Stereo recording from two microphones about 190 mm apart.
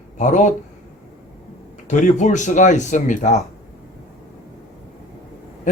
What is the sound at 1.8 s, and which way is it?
Speech, 40° left (ahead or behind).